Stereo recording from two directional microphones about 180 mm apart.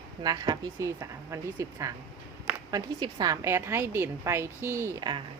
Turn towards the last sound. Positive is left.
turn(degrees=-25)  # may be behind; listen again after turning